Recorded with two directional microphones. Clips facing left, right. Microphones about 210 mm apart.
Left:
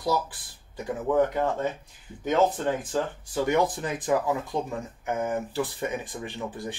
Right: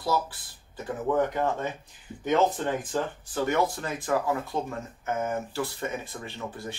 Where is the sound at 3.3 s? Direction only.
15° left (ahead or behind).